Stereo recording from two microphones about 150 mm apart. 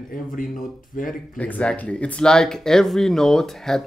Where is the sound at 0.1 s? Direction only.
65° left (ahead or behind).